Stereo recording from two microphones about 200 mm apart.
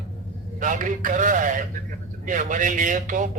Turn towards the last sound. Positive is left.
turn(degrees=-40)  # may be behind; listen again after turning